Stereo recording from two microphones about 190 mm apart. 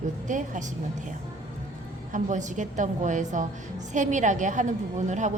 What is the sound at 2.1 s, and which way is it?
A woman's voice, 40° right (ahead or behind).